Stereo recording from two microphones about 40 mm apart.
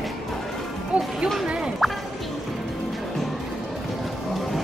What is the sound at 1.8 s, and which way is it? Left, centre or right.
Music, centre.